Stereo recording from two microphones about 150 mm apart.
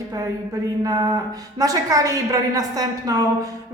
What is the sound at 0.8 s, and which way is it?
A woman's voice, 25° right (ahead or behind).